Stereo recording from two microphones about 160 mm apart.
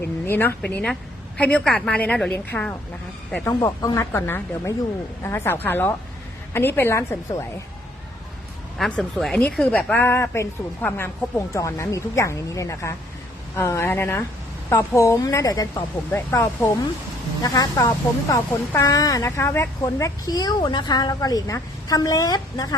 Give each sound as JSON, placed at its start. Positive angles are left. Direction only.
{"t": 0.3, "sound": "a woman's voice", "side_deg": 10}
{"t": 3.4, "sound": "a woman's voice", "side_deg": 25}
{"t": 8.8, "sound": "a woman's voice", "side_deg": 0}